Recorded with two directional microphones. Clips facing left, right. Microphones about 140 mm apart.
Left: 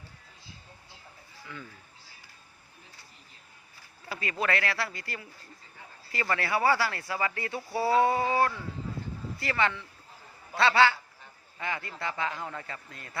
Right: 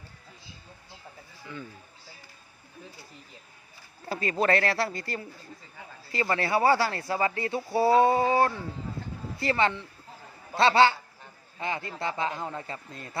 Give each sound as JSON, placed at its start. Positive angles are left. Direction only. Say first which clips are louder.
{"t": 4.0, "sound": "speech", "louder": "right 5 dB", "side_deg": -30}